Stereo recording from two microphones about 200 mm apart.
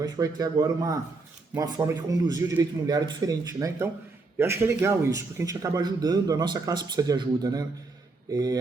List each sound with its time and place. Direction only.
0.0 s a man's voice: 20° right (ahead or behind)